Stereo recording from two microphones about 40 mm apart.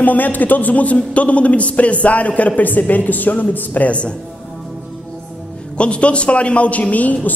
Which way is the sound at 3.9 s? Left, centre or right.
Left.